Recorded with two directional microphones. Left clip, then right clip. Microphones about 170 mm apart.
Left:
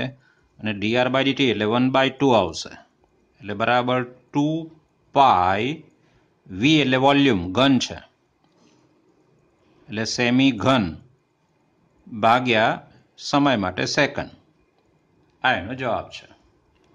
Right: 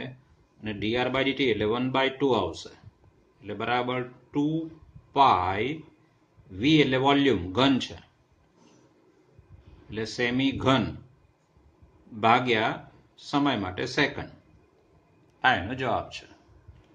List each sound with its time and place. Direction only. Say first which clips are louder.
0.6 s speech: left 7 dB; 45° left (ahead or behind)
9.8 s speech: left 6 dB; 45° left (ahead or behind)
12.2 s speech: left 5 dB; 45° left (ahead or behind)
15.4 s speech: left 2 dB; 20° left (ahead or behind)